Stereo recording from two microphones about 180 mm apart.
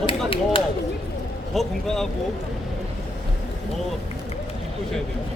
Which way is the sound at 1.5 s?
Centre (ahead or behind).